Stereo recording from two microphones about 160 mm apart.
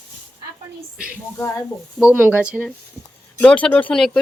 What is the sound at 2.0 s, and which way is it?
Speech, 5° right (ahead or behind).